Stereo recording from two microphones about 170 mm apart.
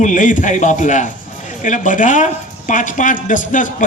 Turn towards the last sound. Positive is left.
turn(degrees=50)  # may be behind; listen again after turning